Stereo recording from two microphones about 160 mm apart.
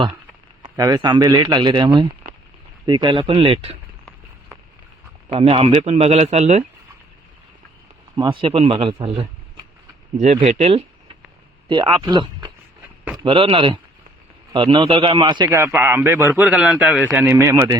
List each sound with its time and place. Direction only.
0.6 s a man's voice: 25° right (ahead or behind)
5.3 s a man's voice: 35° right (ahead or behind)
8.1 s a man's voice: 30° right (ahead or behind)
10.2 s a man's voice: 45° right (ahead or behind)
15.4 s a man's voice: 15° right (ahead or behind)